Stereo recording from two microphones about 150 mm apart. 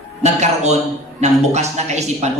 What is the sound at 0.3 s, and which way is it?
A man's voice, 50° right (ahead or behind).